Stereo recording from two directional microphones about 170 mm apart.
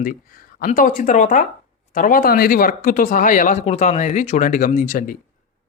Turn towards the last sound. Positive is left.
turn(degrees=55)  # may be behind; listen again after turning